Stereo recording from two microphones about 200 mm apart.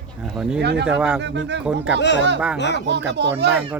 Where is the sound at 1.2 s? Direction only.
60° right (ahead or behind).